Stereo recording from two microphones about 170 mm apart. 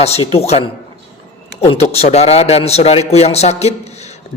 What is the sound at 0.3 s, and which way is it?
A man's voice, 35° left (ahead or behind).